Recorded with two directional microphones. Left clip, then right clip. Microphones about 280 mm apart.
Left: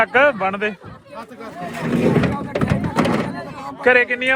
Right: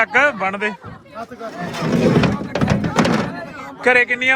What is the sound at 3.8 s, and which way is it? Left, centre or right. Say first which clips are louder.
Speech: right 1 dB; centre.